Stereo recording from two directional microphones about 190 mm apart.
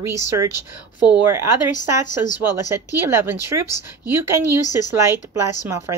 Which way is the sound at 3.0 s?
10° right (ahead or behind).